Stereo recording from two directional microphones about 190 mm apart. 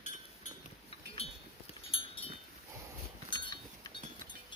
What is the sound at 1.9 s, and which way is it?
Wind chime, 30° left (ahead or behind).